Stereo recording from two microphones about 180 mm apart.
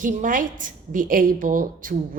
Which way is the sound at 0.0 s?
45° right (ahead or behind).